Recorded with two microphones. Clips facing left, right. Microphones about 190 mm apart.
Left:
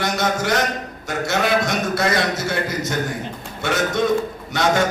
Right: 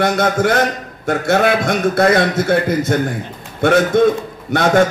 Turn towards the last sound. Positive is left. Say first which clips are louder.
# right 4 dB
turn(degrees=-55)  # may be behind; listen again after turning